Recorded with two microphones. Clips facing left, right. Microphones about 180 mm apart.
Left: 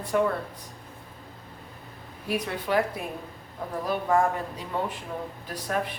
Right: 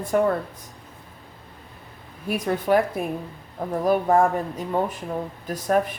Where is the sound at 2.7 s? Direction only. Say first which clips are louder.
Right 5 dB; 50° right (ahead or behind).